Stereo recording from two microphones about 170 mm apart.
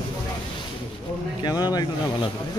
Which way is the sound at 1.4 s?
25° left (ahead or behind).